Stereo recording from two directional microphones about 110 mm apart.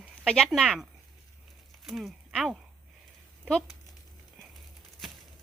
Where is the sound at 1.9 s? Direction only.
Centre (ahead or behind).